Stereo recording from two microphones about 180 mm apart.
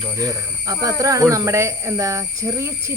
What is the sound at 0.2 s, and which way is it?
Speech, 20° right (ahead or behind).